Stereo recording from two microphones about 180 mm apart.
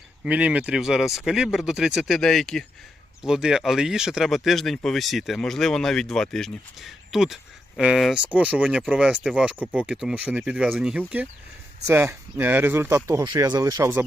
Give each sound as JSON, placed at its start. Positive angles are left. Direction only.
{"t": 0.3, "sound": "speech", "side_deg": -5}